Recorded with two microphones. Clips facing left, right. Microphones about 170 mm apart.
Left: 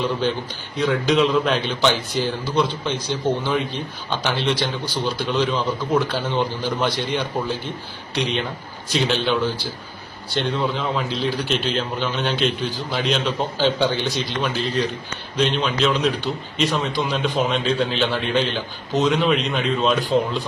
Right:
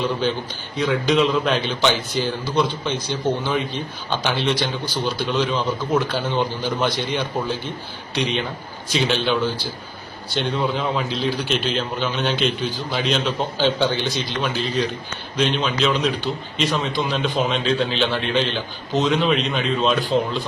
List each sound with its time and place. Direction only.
0.8 s a man's voice: centre (ahead or behind)